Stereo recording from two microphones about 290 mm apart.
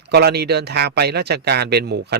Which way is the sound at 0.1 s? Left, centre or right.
Right.